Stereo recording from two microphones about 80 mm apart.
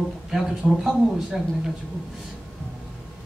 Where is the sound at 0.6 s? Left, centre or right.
Centre.